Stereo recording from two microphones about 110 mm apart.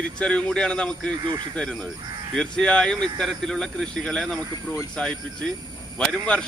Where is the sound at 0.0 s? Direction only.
10° left (ahead or behind).